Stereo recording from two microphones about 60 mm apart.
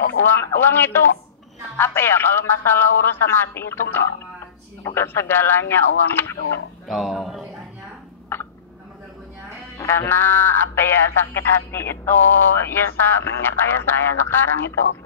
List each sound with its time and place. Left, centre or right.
0.3 s speech: left
6.9 s speech: centre
8.3 s a sound: left
9.8 s speech: left